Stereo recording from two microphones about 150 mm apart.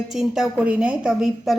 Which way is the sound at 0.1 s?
5° right (ahead or behind).